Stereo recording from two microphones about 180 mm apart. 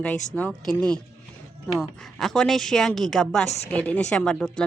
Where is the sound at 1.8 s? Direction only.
Centre (ahead or behind).